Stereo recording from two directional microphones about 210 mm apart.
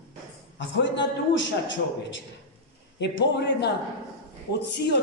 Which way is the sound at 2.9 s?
55° left (ahead or behind).